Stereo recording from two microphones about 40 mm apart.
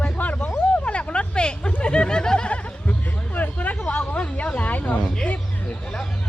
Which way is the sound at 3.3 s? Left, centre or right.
Left.